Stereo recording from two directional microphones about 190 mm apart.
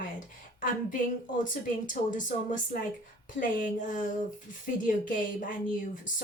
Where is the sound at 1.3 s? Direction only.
45° left (ahead or behind).